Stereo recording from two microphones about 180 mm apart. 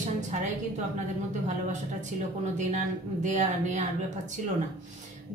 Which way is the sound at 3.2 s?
40° right (ahead or behind).